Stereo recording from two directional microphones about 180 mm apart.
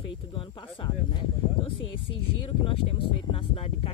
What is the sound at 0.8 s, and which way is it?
Speech, 25° left (ahead or behind).